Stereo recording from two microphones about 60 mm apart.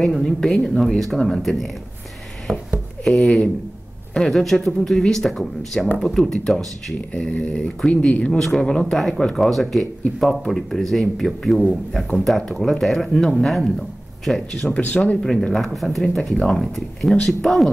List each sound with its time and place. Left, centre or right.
0.0 s speech: centre
3.0 s speech: centre
7.2 s speech: centre
8.3 s speech: centre
8.9 s speech: centre
14.7 s speech: left
15.1 s speech: centre